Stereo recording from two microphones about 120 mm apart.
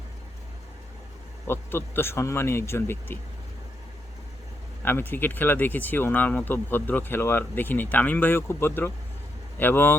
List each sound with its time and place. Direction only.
1.5 s speech: 20° left (ahead or behind)
4.8 s speech: 20° left (ahead or behind)